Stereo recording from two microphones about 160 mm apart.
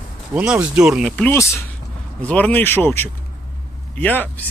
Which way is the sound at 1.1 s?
10° left (ahead or behind).